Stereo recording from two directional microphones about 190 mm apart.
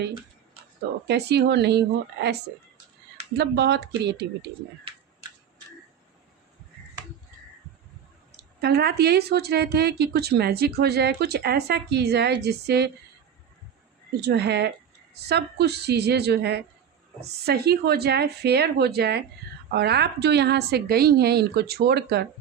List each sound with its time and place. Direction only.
1.0 s speech: 60° right (ahead or behind)
3.3 s speech: 60° right (ahead or behind)
8.6 s speech: 55° right (ahead or behind)
14.2 s speech: 60° right (ahead or behind)